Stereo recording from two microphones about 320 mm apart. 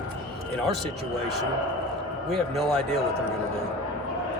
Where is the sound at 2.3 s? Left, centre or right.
Centre.